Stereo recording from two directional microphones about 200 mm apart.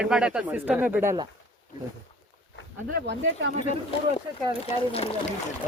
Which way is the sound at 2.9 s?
60° right (ahead or behind).